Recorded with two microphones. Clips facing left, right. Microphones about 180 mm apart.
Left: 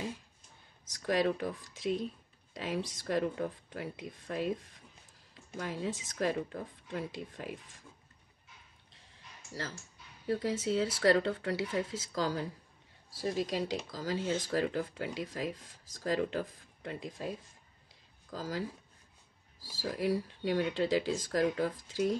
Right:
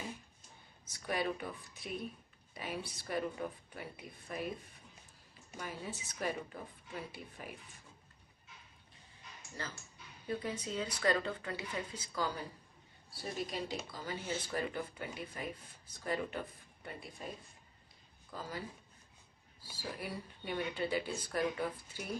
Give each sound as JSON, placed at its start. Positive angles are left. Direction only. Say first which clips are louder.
{"t": 0.8, "sound": "speech", "louder": "left 7 dB", "side_deg": 90}
{"t": 10.2, "sound": "speech", "louder": "left 7 dB", "side_deg": 85}
{"t": 18.3, "sound": "speech", "louder": "left 6 dB", "side_deg": 90}
{"t": 19.6, "sound": "speech", "louder": "left 10 dB", "side_deg": 90}